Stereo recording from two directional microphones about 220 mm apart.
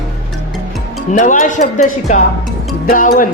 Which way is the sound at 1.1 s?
35° left (ahead or behind).